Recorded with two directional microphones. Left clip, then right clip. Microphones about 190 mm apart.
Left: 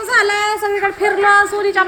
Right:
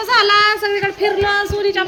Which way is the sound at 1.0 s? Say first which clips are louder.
Left 6 dB; 25° right (ahead or behind).